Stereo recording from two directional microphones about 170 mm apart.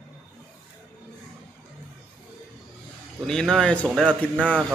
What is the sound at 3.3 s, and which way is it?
Speech, 5° left (ahead or behind).